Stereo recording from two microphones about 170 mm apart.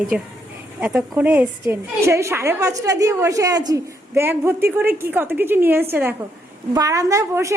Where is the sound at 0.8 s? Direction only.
10° right (ahead or behind).